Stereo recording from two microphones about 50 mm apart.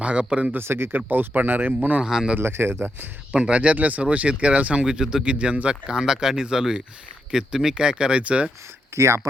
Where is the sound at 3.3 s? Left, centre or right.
Right.